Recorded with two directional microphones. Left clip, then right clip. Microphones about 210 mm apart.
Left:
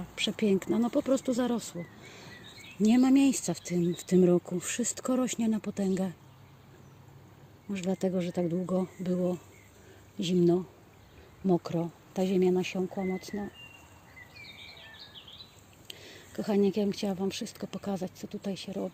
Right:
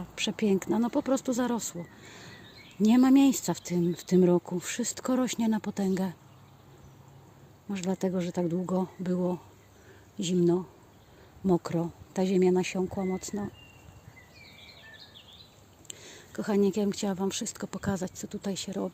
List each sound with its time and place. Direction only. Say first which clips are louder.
0.2 s speech: even; 5° right (ahead or behind)
7.7 s speech: even; 10° right (ahead or behind)
11.4 s speech: right 1 dB; 10° right (ahead or behind)
15.9 s speech: even; centre (ahead or behind); by 18.9 s 15° right (ahead or behind)